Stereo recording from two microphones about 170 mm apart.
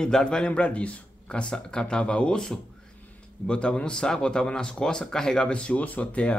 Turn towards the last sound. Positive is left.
turn(degrees=5)  # may be behind; listen again after turning